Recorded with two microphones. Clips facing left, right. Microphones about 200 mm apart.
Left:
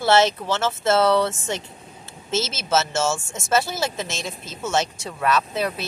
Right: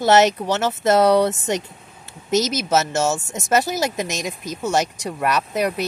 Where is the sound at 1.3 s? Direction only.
40° right (ahead or behind).